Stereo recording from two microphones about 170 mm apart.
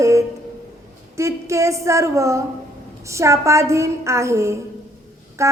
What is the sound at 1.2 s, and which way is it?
A woman's voice, 15° right (ahead or behind).